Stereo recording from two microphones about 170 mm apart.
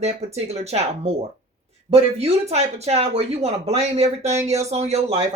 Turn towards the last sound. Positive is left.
turn(degrees=-40)  # may be behind; listen again after turning